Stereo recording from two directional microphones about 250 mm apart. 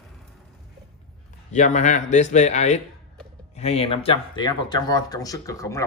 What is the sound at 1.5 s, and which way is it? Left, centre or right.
A man's voice, left.